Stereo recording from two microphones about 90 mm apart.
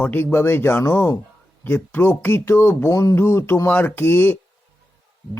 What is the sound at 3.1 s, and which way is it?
A man's voice, 25° left (ahead or behind).